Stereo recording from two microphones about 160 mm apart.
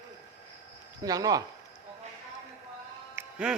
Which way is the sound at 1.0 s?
25° right (ahead or behind).